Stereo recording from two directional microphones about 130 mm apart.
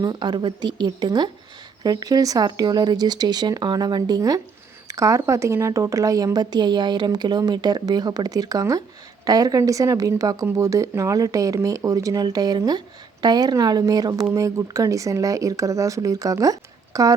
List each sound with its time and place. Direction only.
0.0 s a woman's voice: 35° right (ahead or behind)